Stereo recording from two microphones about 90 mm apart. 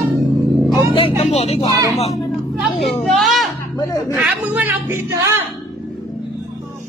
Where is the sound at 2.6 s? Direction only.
Centre (ahead or behind).